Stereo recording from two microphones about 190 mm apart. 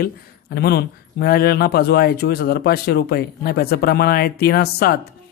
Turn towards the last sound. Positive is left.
turn(degrees=55)  # may be behind; listen again after turning